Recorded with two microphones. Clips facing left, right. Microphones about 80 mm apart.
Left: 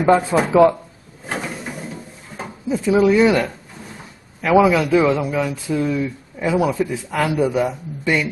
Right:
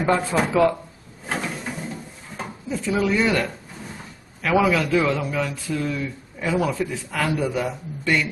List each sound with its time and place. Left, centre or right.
0.0 s a man's voice: centre
1.2 s drawer open or close: centre
2.7 s a man's voice: centre